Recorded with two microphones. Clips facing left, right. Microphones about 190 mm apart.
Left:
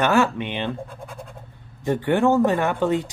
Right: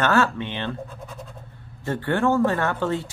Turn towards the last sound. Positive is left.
turn(degrees=15)  # may be behind; listen again after turning